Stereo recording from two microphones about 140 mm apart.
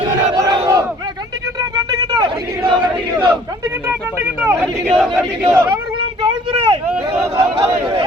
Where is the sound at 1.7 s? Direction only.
30° right (ahead or behind).